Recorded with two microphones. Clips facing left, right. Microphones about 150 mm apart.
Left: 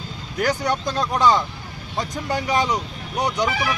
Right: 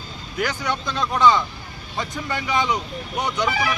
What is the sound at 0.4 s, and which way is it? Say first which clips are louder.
Speech: left 4 dB; 40° left (ahead or behind).